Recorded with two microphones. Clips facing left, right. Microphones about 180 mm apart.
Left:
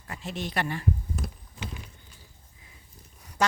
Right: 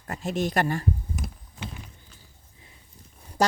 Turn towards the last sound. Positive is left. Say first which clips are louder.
# right 3 dB
turn(degrees=-35)  # may be behind; listen again after turning